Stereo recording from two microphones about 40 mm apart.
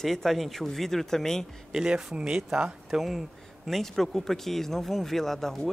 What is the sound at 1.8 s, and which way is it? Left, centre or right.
Speech, right.